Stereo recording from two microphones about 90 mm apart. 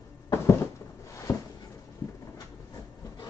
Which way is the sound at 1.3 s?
25° left (ahead or behind).